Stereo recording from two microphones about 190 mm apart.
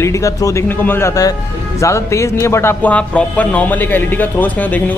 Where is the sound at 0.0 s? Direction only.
15° left (ahead or behind).